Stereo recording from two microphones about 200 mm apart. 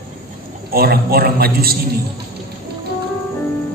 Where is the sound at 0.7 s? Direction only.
50° right (ahead or behind).